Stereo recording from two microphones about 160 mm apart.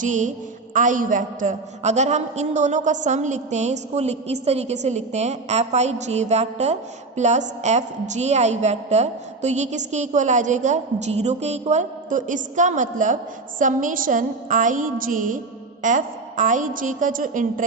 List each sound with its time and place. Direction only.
0.0 s a woman's voice: 50° right (ahead or behind)